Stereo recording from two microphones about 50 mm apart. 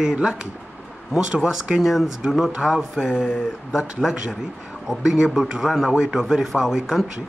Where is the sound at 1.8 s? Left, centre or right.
Centre.